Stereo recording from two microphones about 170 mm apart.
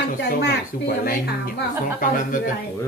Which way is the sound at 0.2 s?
75° left (ahead or behind).